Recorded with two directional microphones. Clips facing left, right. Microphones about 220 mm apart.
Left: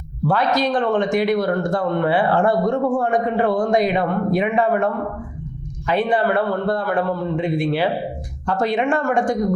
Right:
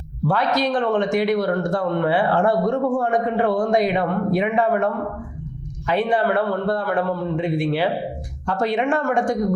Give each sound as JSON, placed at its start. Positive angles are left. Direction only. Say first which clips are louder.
{"t": 0.3, "sound": "speech", "louder": "left 1 dB", "side_deg": 20}
{"t": 8.4, "sound": "speech", "louder": "left 1 dB", "side_deg": 20}